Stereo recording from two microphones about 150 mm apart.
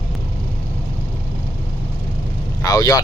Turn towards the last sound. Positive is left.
turn(degrees=25)  # may be behind; listen again after turning